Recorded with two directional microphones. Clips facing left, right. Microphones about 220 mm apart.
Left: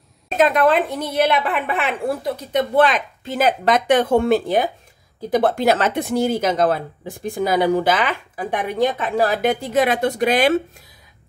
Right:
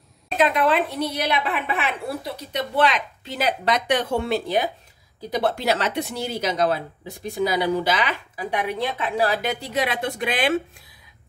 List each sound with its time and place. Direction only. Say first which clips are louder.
0.4 s speech: left 4 dB; 45° left (ahead or behind)